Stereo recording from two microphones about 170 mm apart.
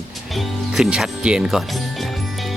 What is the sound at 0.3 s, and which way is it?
Music, 5° right (ahead or behind).